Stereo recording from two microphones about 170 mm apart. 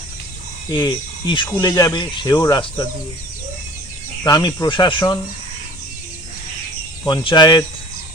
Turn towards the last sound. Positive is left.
turn(degrees=25)  # may be behind; listen again after turning